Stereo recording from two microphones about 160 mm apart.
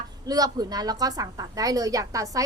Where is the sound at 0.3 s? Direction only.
25° right (ahead or behind).